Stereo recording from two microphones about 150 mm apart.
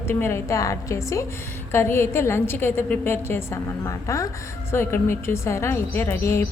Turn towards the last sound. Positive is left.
turn(degrees=15)  # may be behind; listen again after turning